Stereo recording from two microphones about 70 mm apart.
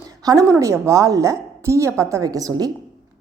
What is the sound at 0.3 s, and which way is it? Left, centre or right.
Speech, right.